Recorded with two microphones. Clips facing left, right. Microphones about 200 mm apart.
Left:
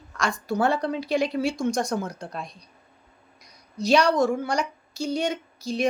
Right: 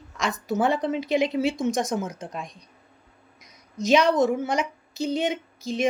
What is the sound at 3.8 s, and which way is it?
Speech, 20° right (ahead or behind).